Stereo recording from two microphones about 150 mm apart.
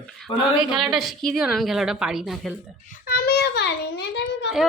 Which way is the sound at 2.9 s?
85° left.